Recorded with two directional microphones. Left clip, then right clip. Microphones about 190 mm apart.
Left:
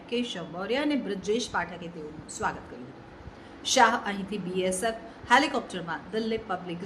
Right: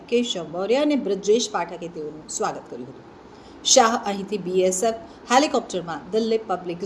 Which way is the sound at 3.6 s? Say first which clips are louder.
Right 5 dB; 10° right (ahead or behind).